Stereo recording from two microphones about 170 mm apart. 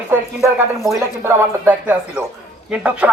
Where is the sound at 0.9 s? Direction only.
15° right (ahead or behind).